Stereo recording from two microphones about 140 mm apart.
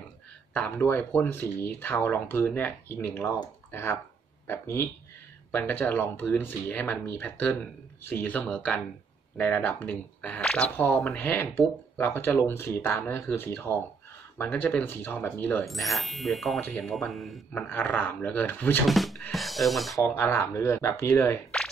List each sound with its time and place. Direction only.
0.5 s speech: 15° left (ahead or behind)
11.1 s speech: 15° left (ahead or behind)
15.6 s speech: centre (ahead or behind)
17.6 s speech: 15° left (ahead or behind)
18.9 s music: centre (ahead or behind)
19.3 s speech: centre (ahead or behind)
20.0 s speech: 15° left (ahead or behind)